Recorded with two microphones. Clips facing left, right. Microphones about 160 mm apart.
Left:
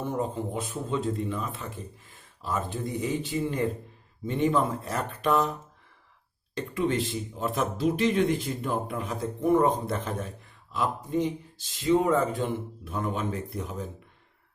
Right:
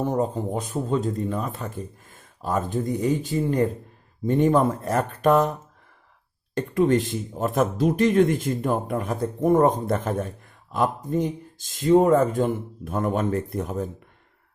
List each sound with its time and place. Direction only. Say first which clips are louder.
0.0 s a man's voice: right 6 dB; 40° right (ahead or behind)